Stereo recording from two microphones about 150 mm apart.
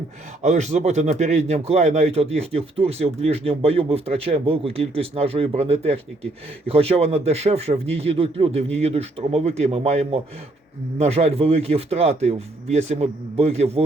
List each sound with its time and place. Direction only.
0.4 s speech: 50° right (ahead or behind)